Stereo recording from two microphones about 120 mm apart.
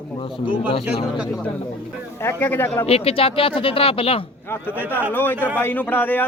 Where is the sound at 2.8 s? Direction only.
50° left (ahead or behind).